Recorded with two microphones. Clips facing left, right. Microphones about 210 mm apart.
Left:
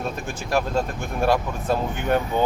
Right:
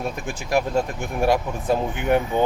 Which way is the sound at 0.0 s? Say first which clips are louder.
Right 1 dB; 15° right (ahead or behind).